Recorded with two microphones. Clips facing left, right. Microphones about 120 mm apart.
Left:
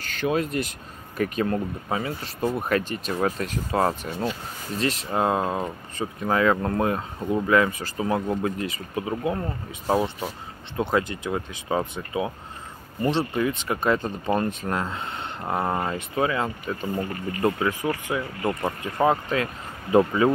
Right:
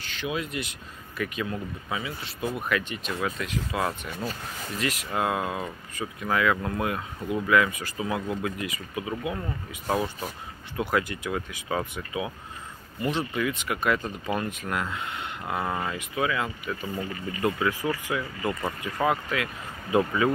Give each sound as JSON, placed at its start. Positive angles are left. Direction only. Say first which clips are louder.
{"t": 0.0, "sound": "speech", "louder": "left 7 dB", "side_deg": 45}
{"t": 18.0, "sound": "speech", "louder": "left 3 dB", "side_deg": 25}